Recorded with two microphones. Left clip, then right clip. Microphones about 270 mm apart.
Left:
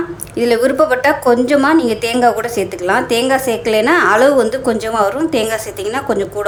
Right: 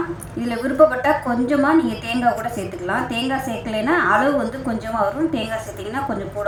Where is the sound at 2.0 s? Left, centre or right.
Left.